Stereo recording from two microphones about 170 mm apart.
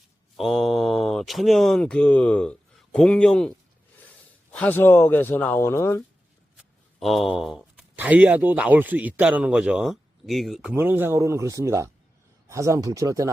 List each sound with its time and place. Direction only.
0.3 s speech: centre (ahead or behind)
4.5 s speech: 10° left (ahead or behind)
6.6 s speech: centre (ahead or behind); by 13.3 s 20° right (ahead or behind)